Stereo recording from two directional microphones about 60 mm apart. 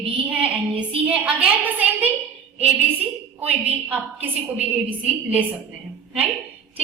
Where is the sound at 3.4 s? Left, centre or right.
Right.